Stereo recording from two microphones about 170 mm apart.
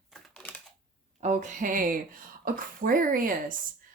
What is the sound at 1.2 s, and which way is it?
Speech, 45° right (ahead or behind).